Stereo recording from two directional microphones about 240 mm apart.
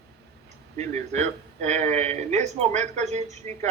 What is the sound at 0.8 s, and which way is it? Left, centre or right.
Speech, right.